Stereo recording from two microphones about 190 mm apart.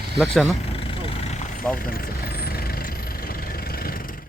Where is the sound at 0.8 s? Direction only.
30° left (ahead or behind).